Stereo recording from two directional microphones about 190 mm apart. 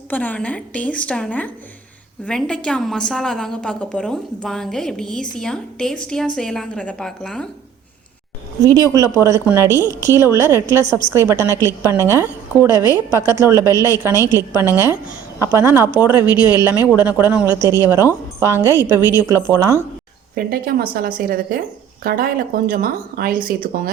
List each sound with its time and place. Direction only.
0.1 s a woman's voice: 10° left (ahead or behind)
8.9 s a woman's voice: 15° right (ahead or behind)
20.3 s speech: 50° right (ahead or behind)